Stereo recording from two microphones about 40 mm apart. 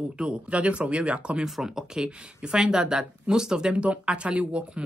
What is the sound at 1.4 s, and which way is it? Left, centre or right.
Speech, centre.